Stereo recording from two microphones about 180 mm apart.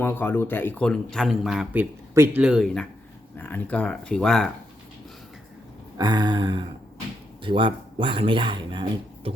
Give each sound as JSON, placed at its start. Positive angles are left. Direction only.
{"t": 0.0, "sound": "speech", "side_deg": 10}
{"t": 3.3, "sound": "speech", "side_deg": 10}
{"t": 6.0, "sound": "speech", "side_deg": -25}